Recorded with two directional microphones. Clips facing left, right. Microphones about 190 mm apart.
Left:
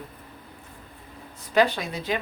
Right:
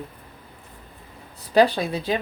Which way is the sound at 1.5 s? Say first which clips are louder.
Right 4 dB; 35° right (ahead or behind).